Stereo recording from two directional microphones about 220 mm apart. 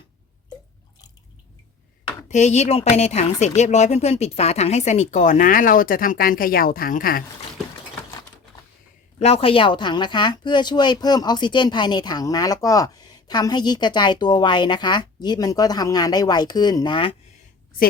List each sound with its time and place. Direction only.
2.3 s speech: 30° left (ahead or behind)
9.1 s speech: 25° left (ahead or behind)